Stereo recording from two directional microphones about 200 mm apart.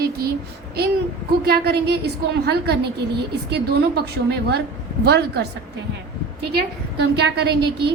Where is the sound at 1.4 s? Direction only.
55° right (ahead or behind).